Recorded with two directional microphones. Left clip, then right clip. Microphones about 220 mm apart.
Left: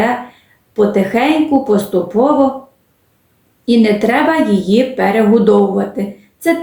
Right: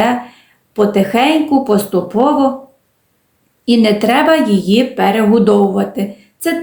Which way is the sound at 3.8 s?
40° right (ahead or behind).